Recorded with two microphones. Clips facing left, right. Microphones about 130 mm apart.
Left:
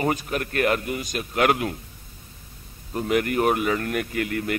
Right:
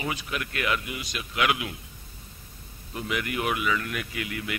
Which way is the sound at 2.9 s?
45° left (ahead or behind).